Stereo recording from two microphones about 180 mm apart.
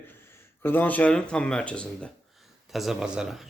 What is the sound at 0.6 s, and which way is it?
A man's voice, 10° left (ahead or behind).